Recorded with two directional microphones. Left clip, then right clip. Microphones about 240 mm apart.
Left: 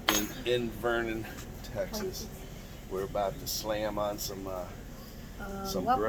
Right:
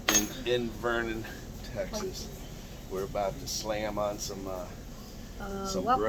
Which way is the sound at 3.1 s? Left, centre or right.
Left.